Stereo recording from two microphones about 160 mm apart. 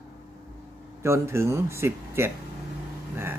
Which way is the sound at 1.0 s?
15° right (ahead or behind).